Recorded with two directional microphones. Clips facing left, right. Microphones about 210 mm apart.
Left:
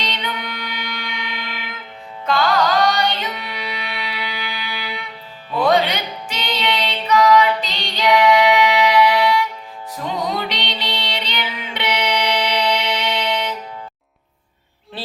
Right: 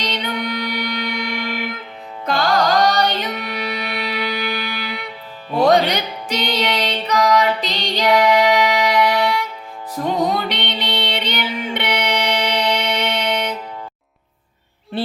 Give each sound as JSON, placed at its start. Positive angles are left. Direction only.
{"t": 0.0, "sound": "music", "side_deg": -40}